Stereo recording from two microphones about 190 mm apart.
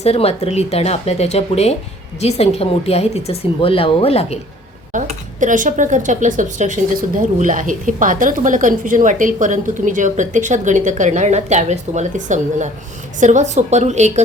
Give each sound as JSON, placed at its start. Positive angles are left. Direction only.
{"t": 0.0, "sound": "speech", "side_deg": 30}
{"t": 5.4, "sound": "a woman's voice", "side_deg": -45}